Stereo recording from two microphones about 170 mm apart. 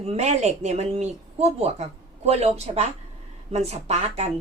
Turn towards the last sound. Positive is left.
turn(degrees=-40)  # may be behind; listen again after turning